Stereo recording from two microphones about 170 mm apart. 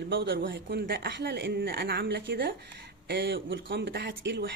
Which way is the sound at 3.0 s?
90° right.